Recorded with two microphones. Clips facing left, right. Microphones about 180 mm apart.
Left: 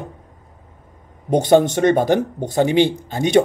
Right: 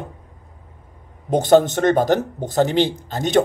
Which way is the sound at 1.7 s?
50° right (ahead or behind).